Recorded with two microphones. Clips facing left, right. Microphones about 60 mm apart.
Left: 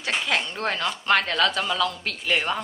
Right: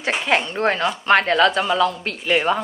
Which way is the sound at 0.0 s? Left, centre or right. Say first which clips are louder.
Right 5 dB; right.